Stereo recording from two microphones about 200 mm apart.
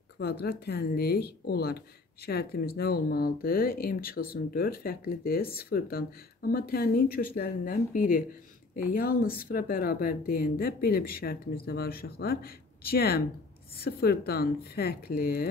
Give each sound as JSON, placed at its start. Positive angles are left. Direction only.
{"t": 0.2, "sound": "speech", "side_deg": 50}